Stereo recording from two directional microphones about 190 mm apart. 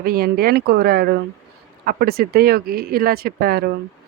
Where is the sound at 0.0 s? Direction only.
50° right (ahead or behind).